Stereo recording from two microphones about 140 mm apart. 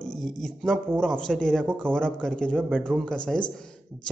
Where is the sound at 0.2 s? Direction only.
Centre (ahead or behind).